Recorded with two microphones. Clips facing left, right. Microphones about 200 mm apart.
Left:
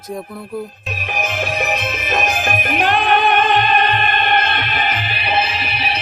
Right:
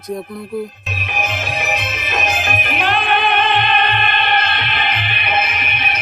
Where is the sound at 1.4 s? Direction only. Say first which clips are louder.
Left 2 dB; 50° left (ahead or behind).